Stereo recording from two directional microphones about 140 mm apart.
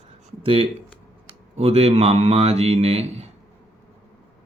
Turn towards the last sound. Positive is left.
turn(degrees=-50)  # may be behind; listen again after turning